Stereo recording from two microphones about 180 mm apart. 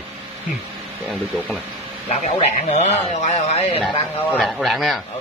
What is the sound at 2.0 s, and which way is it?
Speech, 35° left (ahead or behind).